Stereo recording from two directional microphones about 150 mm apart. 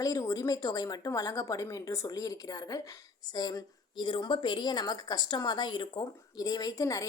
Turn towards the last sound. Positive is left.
turn(degrees=20)  # may be behind; listen again after turning